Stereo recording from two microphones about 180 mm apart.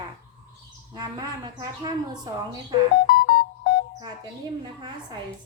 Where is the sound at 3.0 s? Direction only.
55° left (ahead or behind).